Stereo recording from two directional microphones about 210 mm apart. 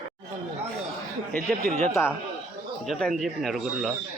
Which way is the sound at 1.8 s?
10° left (ahead or behind).